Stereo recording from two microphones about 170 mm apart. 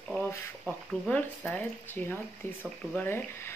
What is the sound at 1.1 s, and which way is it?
Speech, 10° left (ahead or behind).